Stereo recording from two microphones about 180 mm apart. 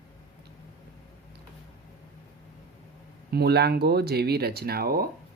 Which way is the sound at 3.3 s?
65° right (ahead or behind).